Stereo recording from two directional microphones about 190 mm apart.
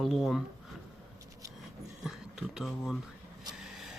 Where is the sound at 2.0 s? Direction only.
5° right (ahead or behind).